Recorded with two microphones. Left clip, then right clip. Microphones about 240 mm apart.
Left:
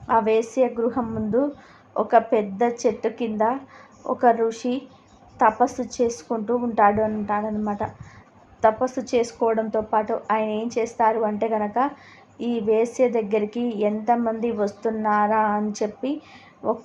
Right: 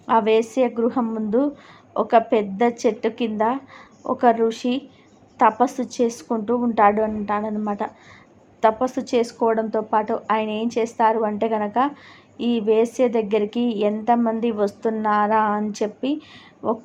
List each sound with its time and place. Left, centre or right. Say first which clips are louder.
0.1 s a woman's voice: right 2 dB; centre